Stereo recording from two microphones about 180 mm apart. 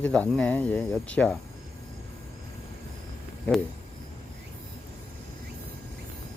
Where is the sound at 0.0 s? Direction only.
5° left (ahead or behind).